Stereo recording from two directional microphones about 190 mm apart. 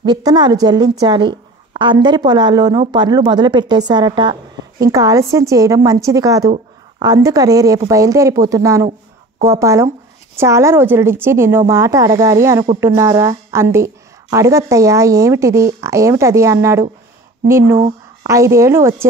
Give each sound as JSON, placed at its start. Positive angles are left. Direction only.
{"t": 0.0, "sound": "a woman's voice", "side_deg": -20}